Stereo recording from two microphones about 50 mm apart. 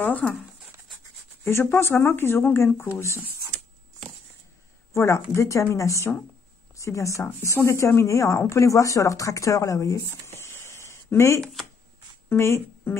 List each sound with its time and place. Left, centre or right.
0.2 s speech: centre
1.4 s speech: left
4.9 s speech: left
5.3 s speech: left